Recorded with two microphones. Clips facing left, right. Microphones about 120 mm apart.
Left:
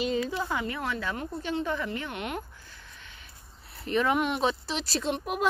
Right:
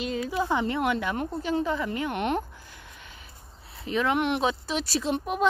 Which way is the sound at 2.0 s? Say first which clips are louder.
Right 7 dB; 50° right (ahead or behind).